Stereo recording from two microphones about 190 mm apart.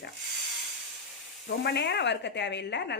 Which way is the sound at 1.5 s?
65° left (ahead or behind).